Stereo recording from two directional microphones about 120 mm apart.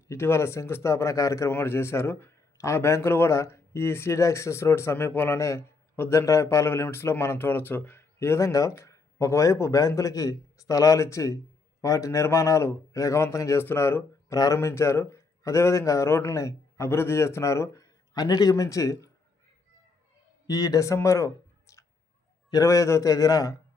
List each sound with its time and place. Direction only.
0.1 s speech: 20° left (ahead or behind)
20.5 s speech: 30° left (ahead or behind)